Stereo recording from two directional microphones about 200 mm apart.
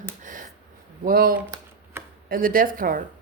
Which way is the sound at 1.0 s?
45° right (ahead or behind).